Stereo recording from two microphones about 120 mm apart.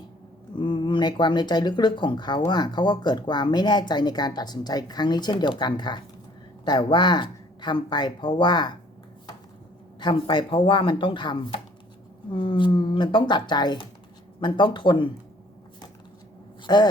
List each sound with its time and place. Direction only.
0.5 s speech: 40° left (ahead or behind)
10.0 s speech: 40° left (ahead or behind)
16.6 s speech: 35° left (ahead or behind)